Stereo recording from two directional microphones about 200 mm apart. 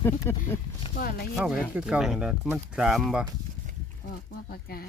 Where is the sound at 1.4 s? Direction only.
Centre (ahead or behind).